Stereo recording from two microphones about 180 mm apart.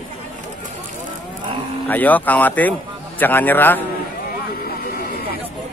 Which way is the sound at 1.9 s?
10° left (ahead or behind).